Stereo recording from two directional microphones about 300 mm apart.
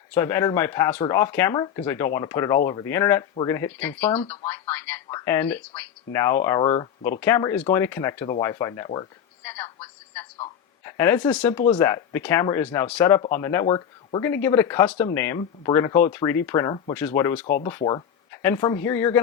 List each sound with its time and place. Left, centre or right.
0.1 s speech: centre
4.1 s speech: centre
4.4 s speech: centre
9.4 s telephone: centre
10.4 s a sound: centre
11.3 s speech: centre